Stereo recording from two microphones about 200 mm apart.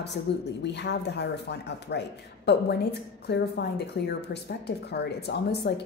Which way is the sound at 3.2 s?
55° left (ahead or behind).